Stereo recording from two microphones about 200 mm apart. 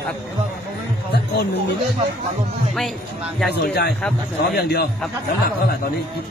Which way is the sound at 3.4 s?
55° left (ahead or behind).